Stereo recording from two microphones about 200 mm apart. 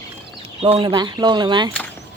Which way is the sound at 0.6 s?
25° right (ahead or behind).